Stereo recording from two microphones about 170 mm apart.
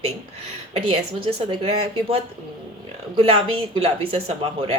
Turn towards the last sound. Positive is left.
turn(degrees=-35)  # may be behind; listen again after turning